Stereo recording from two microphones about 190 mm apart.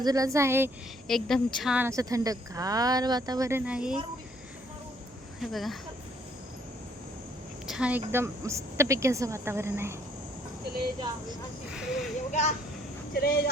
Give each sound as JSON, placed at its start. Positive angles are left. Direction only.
{"t": 0.0, "sound": "speech", "side_deg": -20}
{"t": 1.0, "sound": "speech", "side_deg": 0}
{"t": 3.7, "sound": "speech", "side_deg": -5}
{"t": 5.4, "sound": "speech", "side_deg": 0}
{"t": 7.7, "sound": "speech", "side_deg": -5}
{"t": 11.7, "sound": "speech", "side_deg": 0}
{"t": 12.3, "sound": "speech", "side_deg": 40}
{"t": 13.1, "sound": "speech", "side_deg": 55}